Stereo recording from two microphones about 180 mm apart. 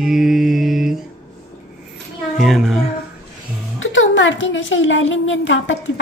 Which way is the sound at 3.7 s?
90° left.